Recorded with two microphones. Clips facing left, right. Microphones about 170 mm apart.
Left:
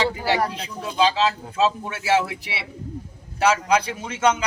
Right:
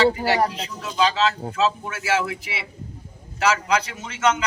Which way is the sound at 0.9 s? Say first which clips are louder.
Left 1 dB; 30° left (ahead or behind).